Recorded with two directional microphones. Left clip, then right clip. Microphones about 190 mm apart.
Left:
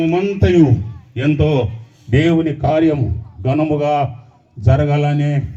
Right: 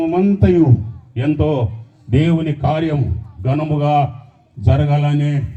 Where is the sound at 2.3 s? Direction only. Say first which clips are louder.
Left 4 dB; 55° left (ahead or behind).